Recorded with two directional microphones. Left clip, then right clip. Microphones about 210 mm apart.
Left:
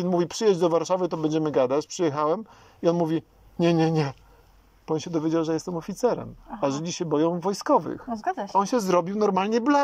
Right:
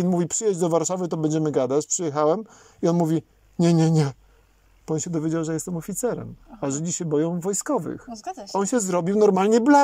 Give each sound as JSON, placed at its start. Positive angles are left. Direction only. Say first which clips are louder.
{"t": 0.0, "sound": "speech", "louder": "left 1 dB", "side_deg": -45}
{"t": 8.1, "sound": "speech", "louder": "left 6 dB", "side_deg": -15}
{"t": 8.5, "sound": "speech", "louder": "left 1 dB", "side_deg": -40}